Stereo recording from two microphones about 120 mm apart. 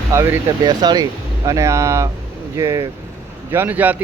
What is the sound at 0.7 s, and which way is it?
Speech, 35° right (ahead or behind).